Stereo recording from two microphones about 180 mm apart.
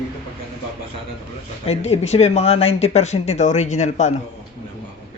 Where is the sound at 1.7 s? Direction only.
35° left (ahead or behind).